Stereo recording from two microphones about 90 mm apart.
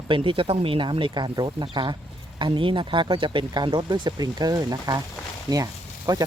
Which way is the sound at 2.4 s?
70° right (ahead or behind).